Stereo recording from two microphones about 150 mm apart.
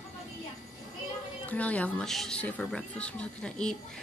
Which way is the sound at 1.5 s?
10° left (ahead or behind).